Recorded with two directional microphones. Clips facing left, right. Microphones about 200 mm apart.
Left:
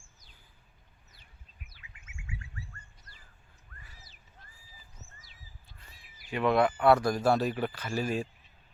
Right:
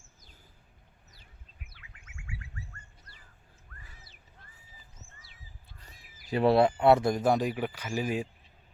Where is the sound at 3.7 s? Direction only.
35° left (ahead or behind).